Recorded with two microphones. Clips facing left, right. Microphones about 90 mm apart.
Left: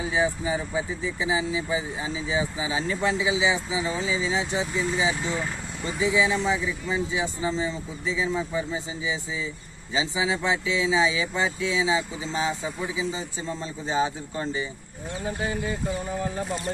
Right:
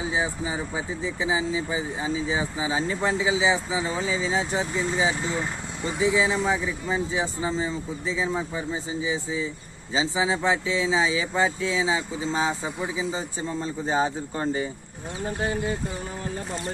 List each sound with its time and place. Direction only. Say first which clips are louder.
0.1 s speech: left 2 dB; 20° right (ahead or behind); by 14.7 s 45° right (ahead or behind)